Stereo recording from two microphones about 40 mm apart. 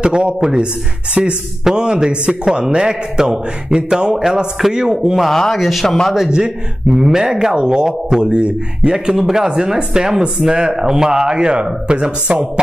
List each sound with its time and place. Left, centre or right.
0.0 s a man's voice: right
5.4 s a man's voice: centre
6.1 s speech: centre
8.9 s a man's voice: centre